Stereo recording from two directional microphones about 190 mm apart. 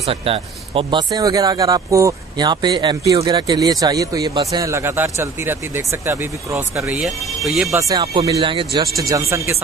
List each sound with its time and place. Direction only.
0.0 s speech: 30° right (ahead or behind); by 6.9 s 15° right (ahead or behind)
6.9 s speech: centre (ahead or behind)
7.7 s speech: 20° right (ahead or behind)